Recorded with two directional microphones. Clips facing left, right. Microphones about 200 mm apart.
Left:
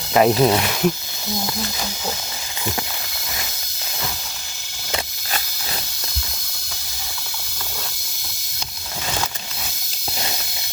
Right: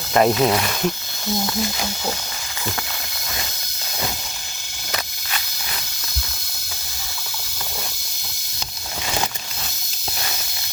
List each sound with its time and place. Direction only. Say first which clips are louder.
0.1 s speech: left 1 dB; 5° left (ahead or behind)
0.3 s speech: left 2 dB; 25° left (ahead or behind)
0.6 s speech: left 3 dB; 5° left (ahead or behind)